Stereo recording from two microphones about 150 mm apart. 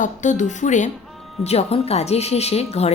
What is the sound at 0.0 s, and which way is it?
Speech, 55° left (ahead or behind).